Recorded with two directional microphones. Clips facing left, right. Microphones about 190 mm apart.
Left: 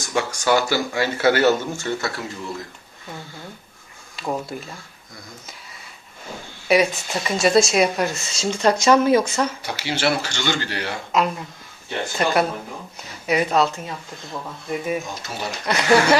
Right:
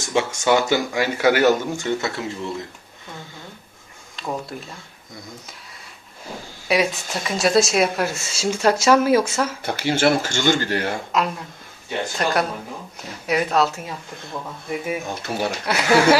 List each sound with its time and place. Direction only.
0.1 s speech: 25° right (ahead or behind)
4.2 s speech: 5° left (ahead or behind)
6.7 s speech: centre (ahead or behind)
9.6 s speech: 50° right (ahead or behind)
11.1 s speech: centre (ahead or behind)
15.0 s speech: 60° right (ahead or behind)
15.6 s speech: 5° right (ahead or behind)